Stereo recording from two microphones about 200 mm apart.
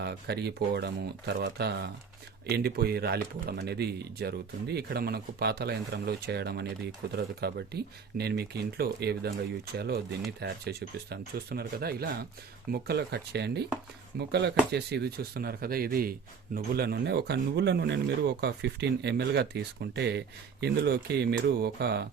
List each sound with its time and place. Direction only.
0.0 s speech: 55° right (ahead or behind)